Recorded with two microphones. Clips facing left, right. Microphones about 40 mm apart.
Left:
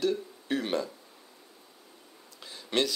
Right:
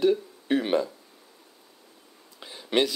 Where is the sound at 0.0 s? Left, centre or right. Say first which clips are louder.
Right 6 dB; centre.